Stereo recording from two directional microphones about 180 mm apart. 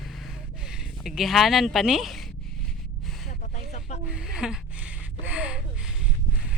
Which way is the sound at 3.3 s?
40° left (ahead or behind).